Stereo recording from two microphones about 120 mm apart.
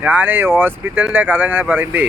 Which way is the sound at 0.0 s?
10° right (ahead or behind).